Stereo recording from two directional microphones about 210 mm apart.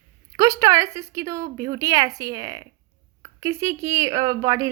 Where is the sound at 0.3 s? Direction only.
15° right (ahead or behind).